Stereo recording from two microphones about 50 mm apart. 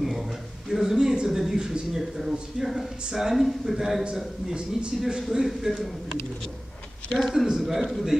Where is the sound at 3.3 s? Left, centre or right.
Centre.